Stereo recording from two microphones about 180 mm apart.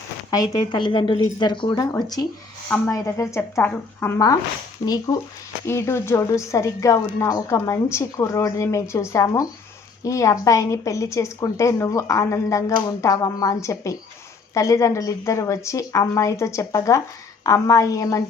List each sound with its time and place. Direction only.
0.3 s a woman's voice: 20° left (ahead or behind)
5.1 s speech: 35° left (ahead or behind)
5.6 s a woman's voice: 15° left (ahead or behind)